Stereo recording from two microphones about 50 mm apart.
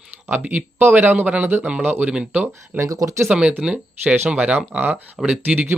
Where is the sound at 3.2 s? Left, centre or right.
Centre.